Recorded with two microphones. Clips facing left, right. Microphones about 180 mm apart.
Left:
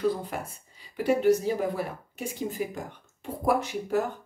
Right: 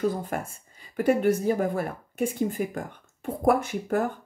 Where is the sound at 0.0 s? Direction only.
45° right (ahead or behind).